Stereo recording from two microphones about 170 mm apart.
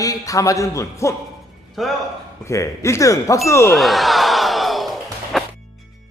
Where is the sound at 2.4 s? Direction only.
15° left (ahead or behind).